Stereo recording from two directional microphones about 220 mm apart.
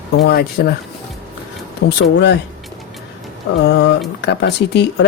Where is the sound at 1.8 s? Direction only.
55° left (ahead or behind).